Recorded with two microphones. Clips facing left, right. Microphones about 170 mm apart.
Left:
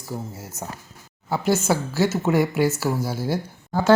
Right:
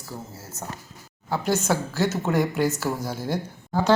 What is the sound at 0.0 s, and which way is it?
Speech, 15° left (ahead or behind).